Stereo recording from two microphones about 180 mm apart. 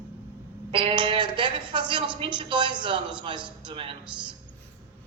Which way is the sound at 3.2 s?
25° right (ahead or behind).